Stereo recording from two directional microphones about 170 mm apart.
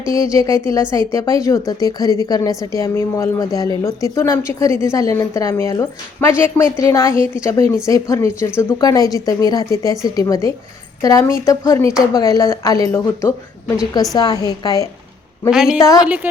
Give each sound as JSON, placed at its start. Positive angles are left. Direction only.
{"t": 0.1, "sound": "a woman's voice", "side_deg": 20}
{"t": 15.4, "sound": "a woman's voice", "side_deg": -5}
{"t": 15.8, "sound": "a woman's voice", "side_deg": 20}
{"t": 16.0, "sound": "a woman's voice", "side_deg": -10}